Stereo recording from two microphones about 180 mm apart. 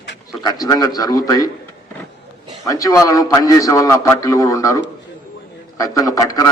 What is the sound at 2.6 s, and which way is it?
A man's voice, 20° left (ahead or behind).